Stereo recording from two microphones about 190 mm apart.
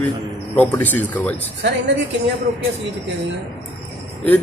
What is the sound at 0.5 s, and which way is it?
Speech, 10° left (ahead or behind).